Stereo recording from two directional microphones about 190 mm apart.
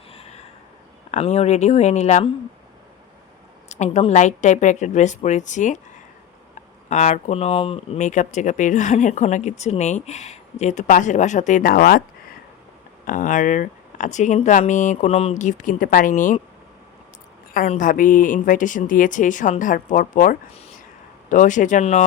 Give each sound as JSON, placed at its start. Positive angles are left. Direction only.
{"t": 0.1, "sound": "a sound", "side_deg": 35}
{"t": 1.1, "sound": "speech", "side_deg": 35}
{"t": 3.7, "sound": "speech", "side_deg": 35}
{"t": 6.8, "sound": "speech", "side_deg": 35}
{"t": 13.1, "sound": "speech", "side_deg": 45}
{"t": 17.5, "sound": "a woman's voice", "side_deg": 45}